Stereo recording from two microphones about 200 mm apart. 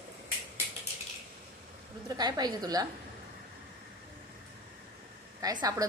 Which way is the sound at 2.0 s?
20° right (ahead or behind).